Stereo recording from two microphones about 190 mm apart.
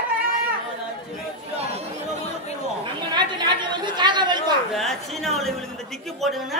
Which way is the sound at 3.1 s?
25° right (ahead or behind).